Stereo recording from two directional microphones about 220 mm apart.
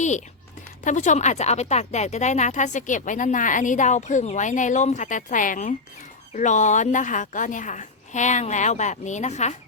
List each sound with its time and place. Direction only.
0.9 s speech: 35° left (ahead or behind)